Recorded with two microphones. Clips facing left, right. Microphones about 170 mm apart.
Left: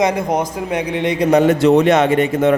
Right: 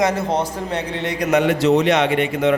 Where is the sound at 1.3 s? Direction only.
45° left (ahead or behind).